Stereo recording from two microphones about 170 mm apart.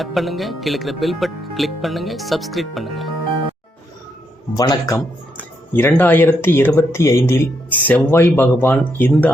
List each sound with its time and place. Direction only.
0.0 s speech: centre (ahead or behind)
4.5 s a man's voice: 25° left (ahead or behind)
5.4 s speech: 10° left (ahead or behind)